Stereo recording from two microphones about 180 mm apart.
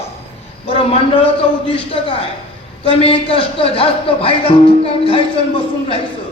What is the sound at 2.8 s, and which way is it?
Speech, 30° left (ahead or behind).